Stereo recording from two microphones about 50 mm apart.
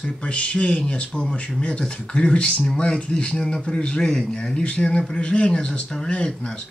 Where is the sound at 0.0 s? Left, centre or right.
Left.